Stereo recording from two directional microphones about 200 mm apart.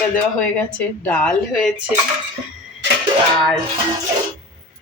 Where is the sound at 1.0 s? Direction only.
5° left (ahead or behind).